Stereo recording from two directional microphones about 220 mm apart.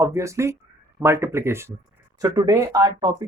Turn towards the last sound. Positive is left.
turn(degrees=-20)  # may be behind; listen again after turning